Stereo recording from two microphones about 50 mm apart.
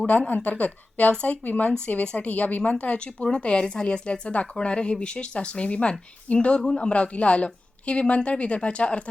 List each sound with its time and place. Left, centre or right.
0.0 s a woman's voice: left